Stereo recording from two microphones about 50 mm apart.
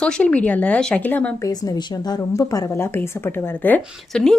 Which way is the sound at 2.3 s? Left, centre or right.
Left.